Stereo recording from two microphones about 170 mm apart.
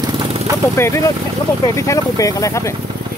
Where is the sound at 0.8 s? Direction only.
15° left (ahead or behind).